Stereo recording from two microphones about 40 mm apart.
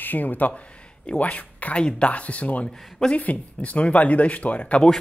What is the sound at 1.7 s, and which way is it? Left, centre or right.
Speech, left.